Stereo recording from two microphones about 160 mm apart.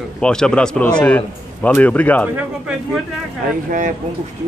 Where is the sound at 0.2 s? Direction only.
5° left (ahead or behind).